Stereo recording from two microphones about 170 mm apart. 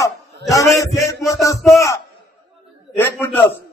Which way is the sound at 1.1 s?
20° left (ahead or behind).